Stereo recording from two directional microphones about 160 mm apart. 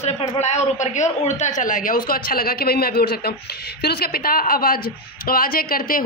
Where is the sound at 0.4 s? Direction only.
45° left (ahead or behind).